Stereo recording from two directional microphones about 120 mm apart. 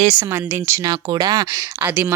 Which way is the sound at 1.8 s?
15° right (ahead or behind).